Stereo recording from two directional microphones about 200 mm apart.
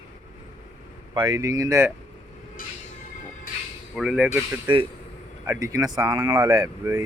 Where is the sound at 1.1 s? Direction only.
20° right (ahead or behind).